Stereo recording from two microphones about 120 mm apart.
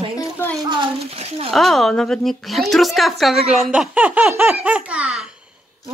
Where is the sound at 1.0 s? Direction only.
60° right (ahead or behind).